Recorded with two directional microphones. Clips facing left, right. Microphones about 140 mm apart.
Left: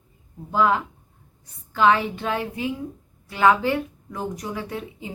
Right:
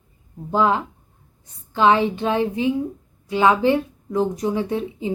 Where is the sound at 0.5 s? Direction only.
25° right (ahead or behind).